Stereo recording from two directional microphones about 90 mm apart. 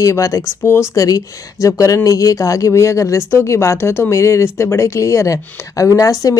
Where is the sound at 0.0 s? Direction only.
35° left (ahead or behind).